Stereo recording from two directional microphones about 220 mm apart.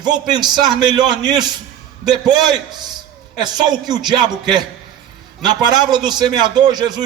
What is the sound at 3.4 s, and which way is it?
A man's voice, 20° right (ahead or behind).